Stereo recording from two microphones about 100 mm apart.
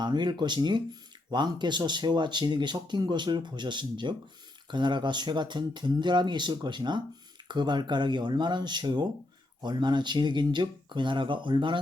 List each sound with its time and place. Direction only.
0.0 s speech: 50° right (ahead or behind)